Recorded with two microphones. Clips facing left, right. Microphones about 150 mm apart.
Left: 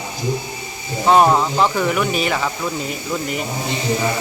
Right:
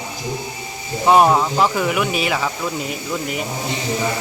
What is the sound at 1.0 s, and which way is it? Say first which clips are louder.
Speech: even; 5° right (ahead or behind).